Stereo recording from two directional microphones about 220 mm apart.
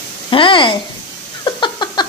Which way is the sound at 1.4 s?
20° left (ahead or behind).